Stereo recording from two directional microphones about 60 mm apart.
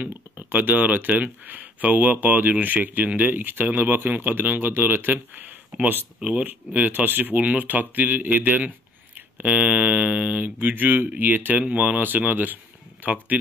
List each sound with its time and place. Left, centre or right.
0.0 s speech: right